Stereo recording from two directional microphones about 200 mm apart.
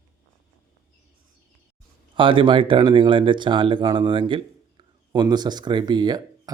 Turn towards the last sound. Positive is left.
turn(degrees=-20)  # may be behind; listen again after turning